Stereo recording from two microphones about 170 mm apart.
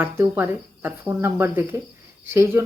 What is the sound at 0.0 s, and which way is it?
Speech, 15° right (ahead or behind).